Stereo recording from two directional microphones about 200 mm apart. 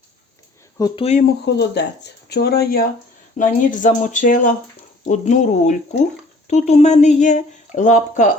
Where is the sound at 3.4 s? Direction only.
40° left (ahead or behind).